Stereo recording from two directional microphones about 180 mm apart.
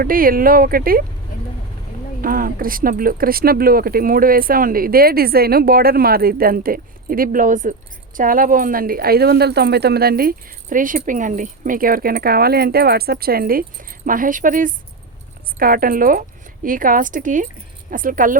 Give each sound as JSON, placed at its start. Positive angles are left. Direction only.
{"t": 0.0, "sound": "speech", "side_deg": -50}
{"t": 2.2, "sound": "speech", "side_deg": -50}